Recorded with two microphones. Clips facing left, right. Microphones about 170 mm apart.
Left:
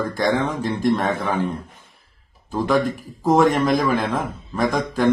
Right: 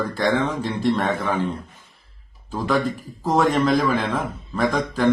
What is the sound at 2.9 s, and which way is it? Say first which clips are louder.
A man's voice: left 4 dB; 10° left (ahead or behind).